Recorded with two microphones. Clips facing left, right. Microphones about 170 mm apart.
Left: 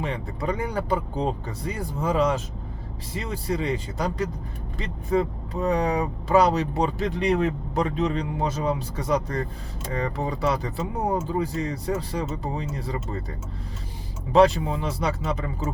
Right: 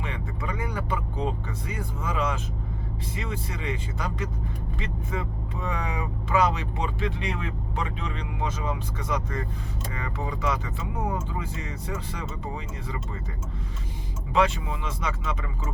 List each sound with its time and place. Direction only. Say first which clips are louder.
0.0 s speech: left 5 dB; 35° left (ahead or behind)
14.3 s speech: left 7 dB; 35° left (ahead or behind)